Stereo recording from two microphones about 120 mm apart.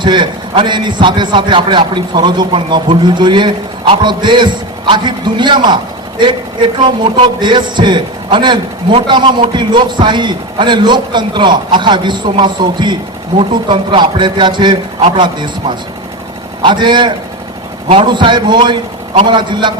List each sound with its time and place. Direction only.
0.0 s a man's voice: 40° right (ahead or behind)